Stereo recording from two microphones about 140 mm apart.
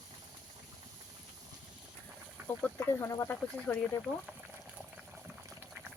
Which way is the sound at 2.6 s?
15° left (ahead or behind).